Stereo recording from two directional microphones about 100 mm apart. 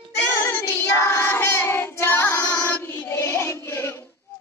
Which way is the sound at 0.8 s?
25° left (ahead or behind).